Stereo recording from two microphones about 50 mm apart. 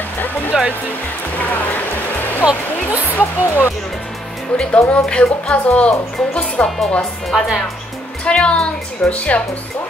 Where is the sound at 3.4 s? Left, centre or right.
Left.